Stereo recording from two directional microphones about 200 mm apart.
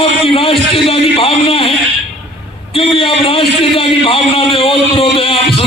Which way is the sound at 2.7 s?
25° left (ahead or behind).